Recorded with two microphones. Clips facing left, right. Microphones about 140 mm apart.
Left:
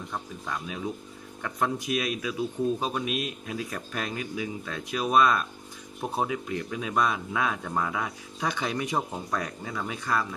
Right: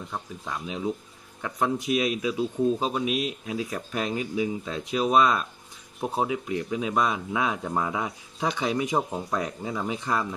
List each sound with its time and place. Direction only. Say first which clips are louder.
0.1 s speech: left 1 dB; 10° right (ahead or behind)